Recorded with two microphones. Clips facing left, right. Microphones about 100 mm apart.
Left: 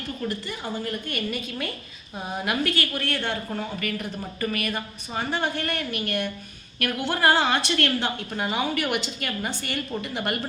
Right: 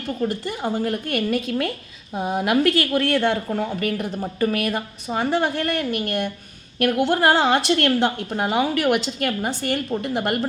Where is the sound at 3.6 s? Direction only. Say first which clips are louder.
Right 6 dB; 60° right (ahead or behind); by 6.0 s 90° right.